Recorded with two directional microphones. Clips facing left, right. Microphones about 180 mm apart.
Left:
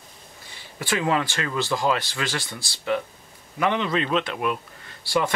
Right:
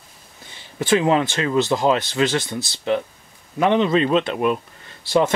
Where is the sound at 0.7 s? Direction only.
20° right (ahead or behind).